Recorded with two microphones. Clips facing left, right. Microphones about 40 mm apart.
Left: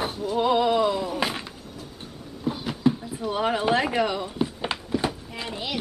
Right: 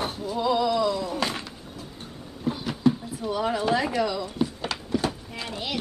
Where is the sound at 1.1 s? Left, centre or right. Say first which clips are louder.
Left 1 dB; centre.